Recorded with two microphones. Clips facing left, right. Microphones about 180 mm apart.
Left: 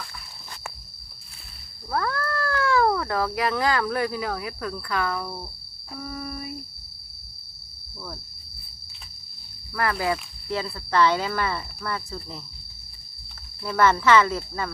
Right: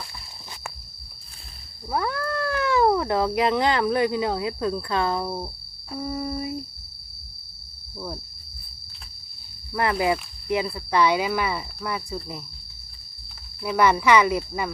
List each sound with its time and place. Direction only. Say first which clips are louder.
1.9 s speech: right 1 dB; 15° right (ahead or behind)
6.0 s a sound: right 6 dB; 20° right (ahead or behind)
7.9 s cricket: right 5 dB; 20° right (ahead or behind)
9.7 s speech: right 3 dB; 20° right (ahead or behind)
13.6 s speech: right 1 dB; 15° right (ahead or behind)